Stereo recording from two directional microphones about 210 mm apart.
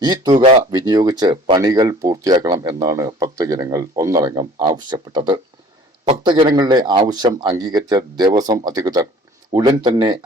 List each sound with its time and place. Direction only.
0.0 s speech: 20° right (ahead or behind)